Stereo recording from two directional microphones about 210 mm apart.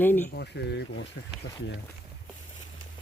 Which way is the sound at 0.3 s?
55° left (ahead or behind).